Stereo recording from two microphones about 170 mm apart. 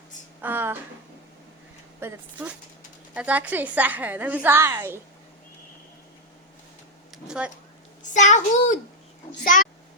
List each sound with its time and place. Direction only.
0.4 s a woman's voice: 10° right (ahead or behind)
2.0 s a woman's voice: 10° right (ahead or behind)
7.1 s speech: 5° right (ahead or behind)
8.0 s a child's voice: 45° left (ahead or behind)